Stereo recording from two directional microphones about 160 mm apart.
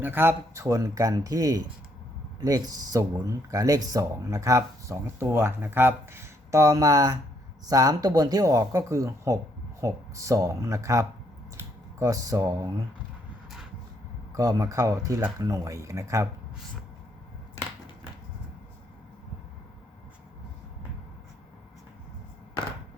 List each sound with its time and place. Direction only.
0.0 s speech: 15° right (ahead or behind)
14.3 s speech: 20° right (ahead or behind)